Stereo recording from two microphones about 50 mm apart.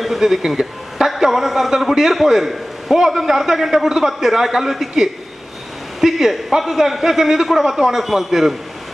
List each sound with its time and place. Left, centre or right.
0.0 s a man's voice: centre